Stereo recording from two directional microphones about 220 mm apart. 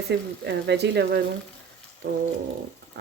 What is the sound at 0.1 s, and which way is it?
Speech, 50° right (ahead or behind).